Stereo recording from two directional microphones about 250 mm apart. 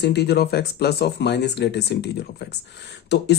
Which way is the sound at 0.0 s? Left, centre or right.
Left.